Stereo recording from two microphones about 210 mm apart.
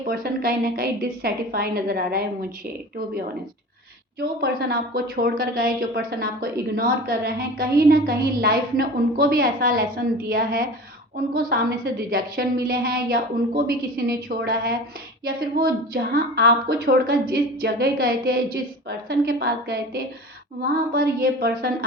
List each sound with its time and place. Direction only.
0.0 s a woman's voice: 45° right (ahead or behind)
4.2 s a woman's voice: 45° right (ahead or behind)